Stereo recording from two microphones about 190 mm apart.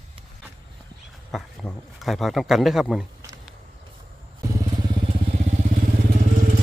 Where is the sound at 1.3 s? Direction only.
Centre (ahead or behind).